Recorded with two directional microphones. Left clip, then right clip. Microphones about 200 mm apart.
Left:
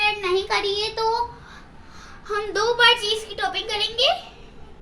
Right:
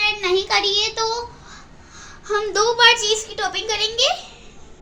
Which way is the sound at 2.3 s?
40° right (ahead or behind).